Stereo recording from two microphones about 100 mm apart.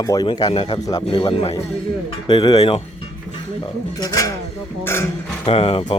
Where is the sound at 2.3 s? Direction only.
55° left (ahead or behind).